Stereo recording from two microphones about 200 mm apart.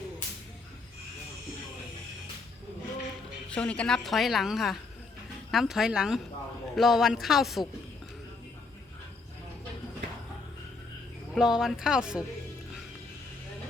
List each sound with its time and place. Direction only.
3.5 s a woman's voice: 5° left (ahead or behind)
11.3 s a woman's voice: 5° right (ahead or behind)